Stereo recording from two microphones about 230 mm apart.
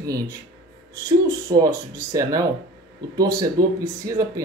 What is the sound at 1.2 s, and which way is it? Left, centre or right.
Speech, centre.